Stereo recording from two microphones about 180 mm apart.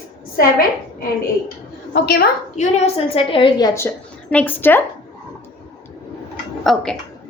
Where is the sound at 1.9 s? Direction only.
65° left (ahead or behind).